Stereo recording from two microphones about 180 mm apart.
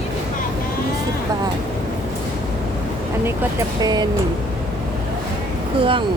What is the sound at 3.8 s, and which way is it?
Speech, 20° right (ahead or behind).